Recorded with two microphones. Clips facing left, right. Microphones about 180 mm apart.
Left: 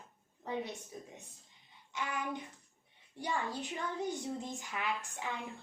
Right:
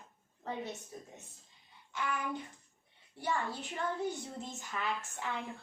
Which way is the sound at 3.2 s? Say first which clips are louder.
Right 1 dB; 15° left (ahead or behind).